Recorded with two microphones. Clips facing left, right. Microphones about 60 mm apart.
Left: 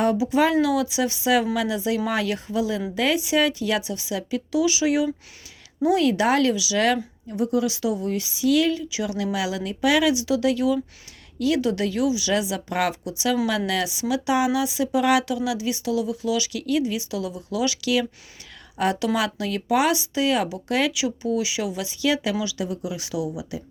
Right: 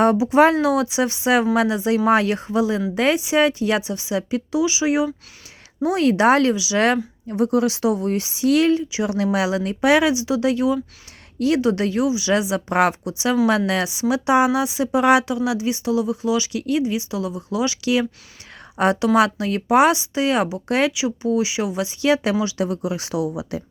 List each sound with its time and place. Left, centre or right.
0.3 s speech: right; by 5.1 s centre
5.8 s speech: right
20.9 s speech: centre